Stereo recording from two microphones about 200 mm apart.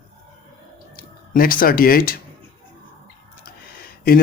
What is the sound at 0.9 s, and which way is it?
Speech, 45° left (ahead or behind).